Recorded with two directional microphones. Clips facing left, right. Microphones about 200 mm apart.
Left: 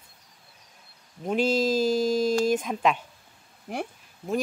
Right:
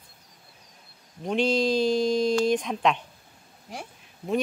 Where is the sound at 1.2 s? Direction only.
5° left (ahead or behind).